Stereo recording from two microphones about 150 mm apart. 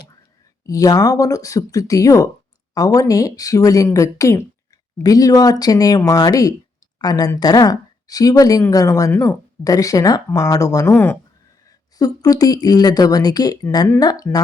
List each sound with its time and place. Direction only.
0.6 s speech: 20° left (ahead or behind)